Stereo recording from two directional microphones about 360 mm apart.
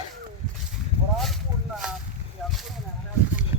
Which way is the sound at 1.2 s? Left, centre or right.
Centre.